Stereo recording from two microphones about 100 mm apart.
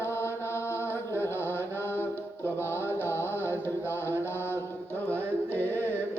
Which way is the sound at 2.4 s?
25° left (ahead or behind).